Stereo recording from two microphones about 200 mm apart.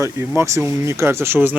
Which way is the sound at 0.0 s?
15° right (ahead or behind).